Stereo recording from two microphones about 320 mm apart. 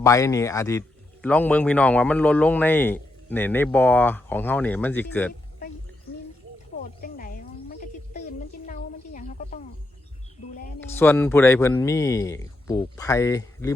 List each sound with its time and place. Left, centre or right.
0.0 s a man's voice: centre
7.0 s snake: left
8.6 s a sound: left
10.8 s a man's voice: centre